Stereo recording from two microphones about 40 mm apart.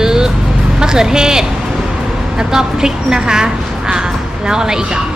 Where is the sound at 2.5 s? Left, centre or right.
Centre.